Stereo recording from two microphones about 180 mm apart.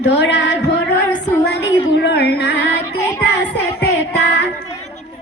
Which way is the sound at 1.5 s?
75° left (ahead or behind).